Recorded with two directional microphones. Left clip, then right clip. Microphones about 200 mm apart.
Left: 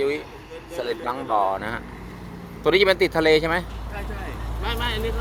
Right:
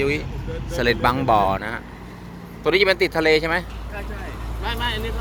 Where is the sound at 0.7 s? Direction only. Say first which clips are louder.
Right 7 dB; centre (ahead or behind).